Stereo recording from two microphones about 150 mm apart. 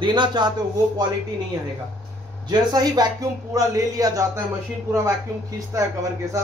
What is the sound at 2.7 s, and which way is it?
Speech, 25° right (ahead or behind).